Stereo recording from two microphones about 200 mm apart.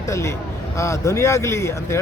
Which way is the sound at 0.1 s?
15° left (ahead or behind).